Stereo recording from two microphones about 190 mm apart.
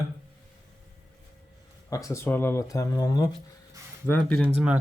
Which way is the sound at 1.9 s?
15° left (ahead or behind).